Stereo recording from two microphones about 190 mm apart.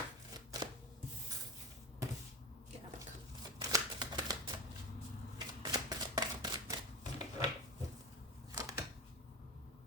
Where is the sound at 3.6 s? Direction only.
20° right (ahead or behind).